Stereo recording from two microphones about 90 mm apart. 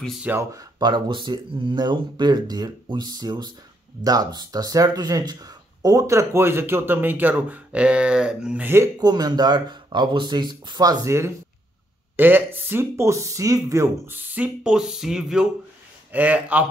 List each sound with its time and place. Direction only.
0.4 s speech: 40° right (ahead or behind); by 8.6 s 10° right (ahead or behind)
8.6 s speech: 25° right (ahead or behind)
9.0 s speech: 50° right (ahead or behind)
12.2 s speech: 25° right (ahead or behind)
14.1 s speech: 20° right (ahead or behind)
16.1 s speech: 15° right (ahead or behind)